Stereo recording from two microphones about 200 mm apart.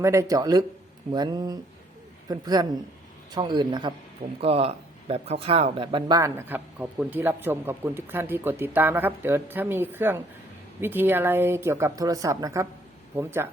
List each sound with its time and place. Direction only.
0.0 s a man's voice: 15° right (ahead or behind)